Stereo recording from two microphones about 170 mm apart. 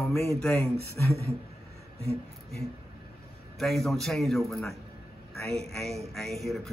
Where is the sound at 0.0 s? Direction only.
15° left (ahead or behind).